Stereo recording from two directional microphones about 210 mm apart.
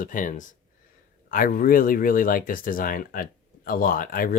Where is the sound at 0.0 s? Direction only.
40° left (ahead or behind).